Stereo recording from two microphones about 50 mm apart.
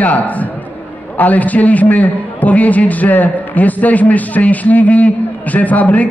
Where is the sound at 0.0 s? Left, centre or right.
Left.